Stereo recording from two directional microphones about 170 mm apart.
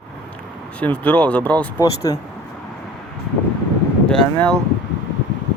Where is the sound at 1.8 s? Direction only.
20° left (ahead or behind).